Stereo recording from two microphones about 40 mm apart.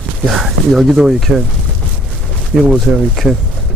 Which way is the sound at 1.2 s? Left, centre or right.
Centre.